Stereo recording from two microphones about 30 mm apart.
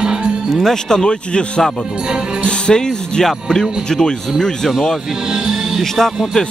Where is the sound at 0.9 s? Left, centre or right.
Left.